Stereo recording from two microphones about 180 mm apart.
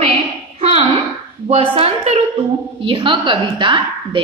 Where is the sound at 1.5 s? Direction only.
35° right (ahead or behind).